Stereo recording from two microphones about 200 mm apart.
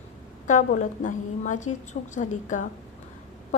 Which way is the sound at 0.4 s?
35° left (ahead or behind).